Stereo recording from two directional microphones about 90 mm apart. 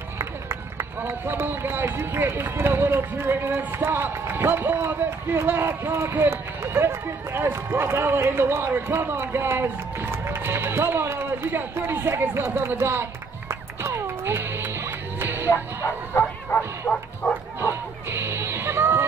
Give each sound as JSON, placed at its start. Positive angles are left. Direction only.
{"t": 0.2, "sound": "speech", "side_deg": -30}
{"t": 13.5, "sound": "music", "side_deg": -30}
{"t": 15.5, "sound": "bow-wow", "side_deg": 30}
{"t": 17.2, "sound": "bow-wow", "side_deg": 10}
{"t": 17.6, "sound": "music", "side_deg": -25}